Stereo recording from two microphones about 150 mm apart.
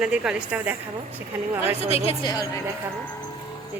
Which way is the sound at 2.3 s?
25° left (ahead or behind).